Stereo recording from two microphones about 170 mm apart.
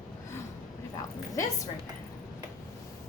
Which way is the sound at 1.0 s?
20° left (ahead or behind).